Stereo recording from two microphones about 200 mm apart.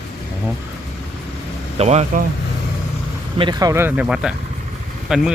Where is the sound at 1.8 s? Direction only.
35° right (ahead or behind).